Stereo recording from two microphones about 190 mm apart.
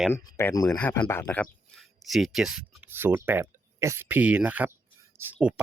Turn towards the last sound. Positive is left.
turn(degrees=-5)  # may be behind; listen again after turning